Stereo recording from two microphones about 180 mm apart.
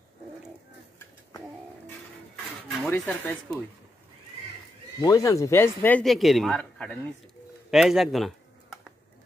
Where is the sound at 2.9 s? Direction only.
10° left (ahead or behind).